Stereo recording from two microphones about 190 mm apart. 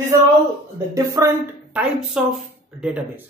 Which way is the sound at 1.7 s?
5° right (ahead or behind).